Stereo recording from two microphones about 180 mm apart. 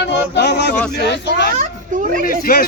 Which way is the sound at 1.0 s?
70° left (ahead or behind).